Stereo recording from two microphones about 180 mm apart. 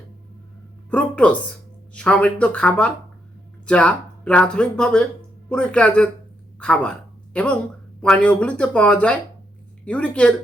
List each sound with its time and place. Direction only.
0.9 s speech: 5° left (ahead or behind)